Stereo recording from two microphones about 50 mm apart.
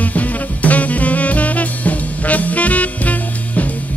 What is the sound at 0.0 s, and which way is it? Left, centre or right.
Music, left.